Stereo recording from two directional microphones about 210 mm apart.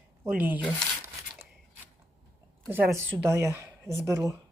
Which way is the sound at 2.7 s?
10° right (ahead or behind).